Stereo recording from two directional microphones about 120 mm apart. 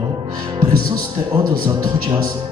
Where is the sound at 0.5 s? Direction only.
30° right (ahead or behind).